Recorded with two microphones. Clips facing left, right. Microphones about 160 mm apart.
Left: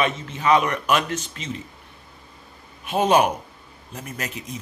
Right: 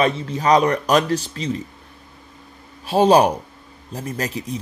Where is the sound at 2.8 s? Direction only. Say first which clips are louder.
Right 5 dB; 35° right (ahead or behind).